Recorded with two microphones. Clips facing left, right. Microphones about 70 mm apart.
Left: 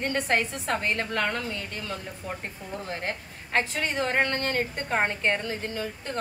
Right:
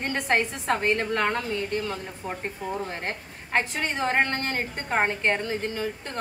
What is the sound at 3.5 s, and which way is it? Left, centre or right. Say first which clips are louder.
A woman's voice: right 1 dB; right.